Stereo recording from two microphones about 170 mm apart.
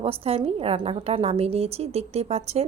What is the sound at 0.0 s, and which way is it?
Speech, 35° right (ahead or behind).